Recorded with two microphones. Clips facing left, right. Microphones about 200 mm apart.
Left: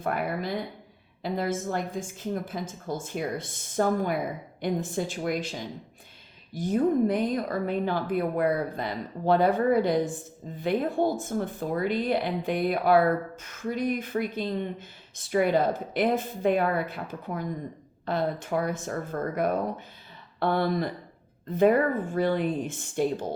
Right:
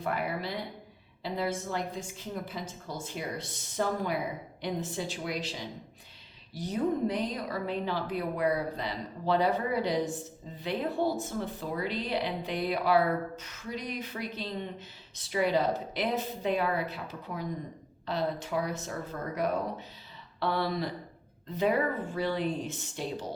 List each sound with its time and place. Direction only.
0.0 s speech: 50° left (ahead or behind)